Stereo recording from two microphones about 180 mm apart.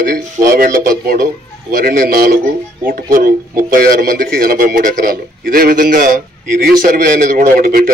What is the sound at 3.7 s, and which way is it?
A man's voice, 55° right (ahead or behind).